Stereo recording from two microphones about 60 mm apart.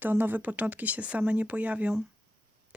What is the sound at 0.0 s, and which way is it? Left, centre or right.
Speech, right.